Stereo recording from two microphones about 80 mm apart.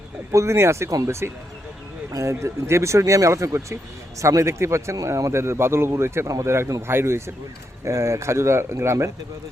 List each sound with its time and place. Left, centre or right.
0.3 s speech: right